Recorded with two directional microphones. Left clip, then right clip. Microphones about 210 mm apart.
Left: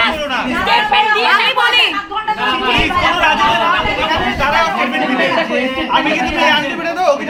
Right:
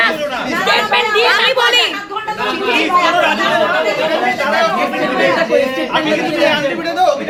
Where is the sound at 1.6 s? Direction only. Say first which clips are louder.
Even; centre (ahead or behind).